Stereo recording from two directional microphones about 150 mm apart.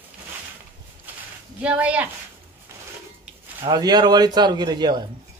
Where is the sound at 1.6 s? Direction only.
10° right (ahead or behind).